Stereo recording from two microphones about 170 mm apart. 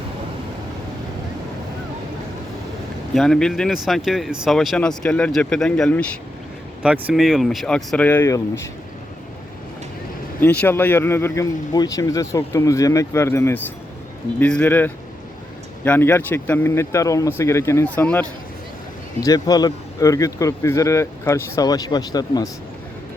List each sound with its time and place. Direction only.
3.2 s speech: 5° left (ahead or behind)
10.4 s speech: 10° left (ahead or behind)
19.2 s speech: 20° left (ahead or behind)